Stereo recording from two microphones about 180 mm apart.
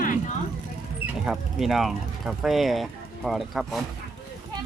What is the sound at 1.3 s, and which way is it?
Speech, centre (ahead or behind).